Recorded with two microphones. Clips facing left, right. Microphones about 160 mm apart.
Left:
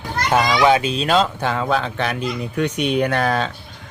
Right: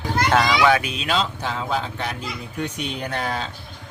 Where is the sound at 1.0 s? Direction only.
50° left (ahead or behind); by 3.5 s 75° left (ahead or behind).